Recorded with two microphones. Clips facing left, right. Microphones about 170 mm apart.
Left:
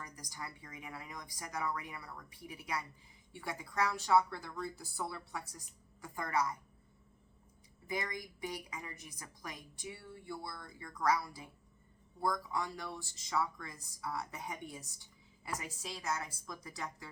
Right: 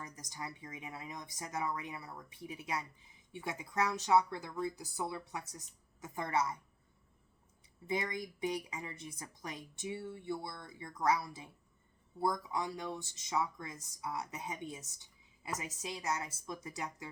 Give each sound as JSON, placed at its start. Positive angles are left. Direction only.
{"t": 0.0, "sound": "speech", "side_deg": -25}
{"t": 7.9, "sound": "speech", "side_deg": -25}